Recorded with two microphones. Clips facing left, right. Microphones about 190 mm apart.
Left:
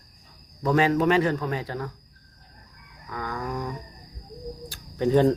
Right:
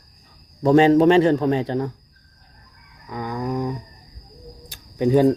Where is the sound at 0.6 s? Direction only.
30° right (ahead or behind).